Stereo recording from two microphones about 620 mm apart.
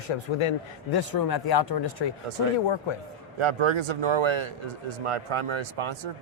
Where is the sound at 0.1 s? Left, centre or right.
Left.